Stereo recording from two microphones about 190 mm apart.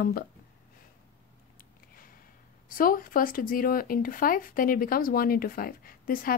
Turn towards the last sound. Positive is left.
turn(degrees=50)  # may be behind; listen again after turning